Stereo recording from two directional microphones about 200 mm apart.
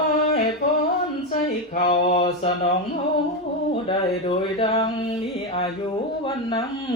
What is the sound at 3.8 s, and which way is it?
Speech, 25° left (ahead or behind).